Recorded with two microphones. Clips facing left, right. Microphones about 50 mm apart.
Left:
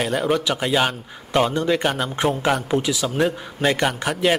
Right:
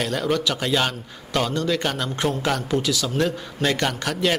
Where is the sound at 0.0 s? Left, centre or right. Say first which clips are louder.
Left 2 dB; centre.